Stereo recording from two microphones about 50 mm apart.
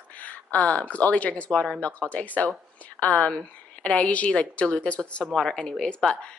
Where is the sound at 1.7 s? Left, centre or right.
Left.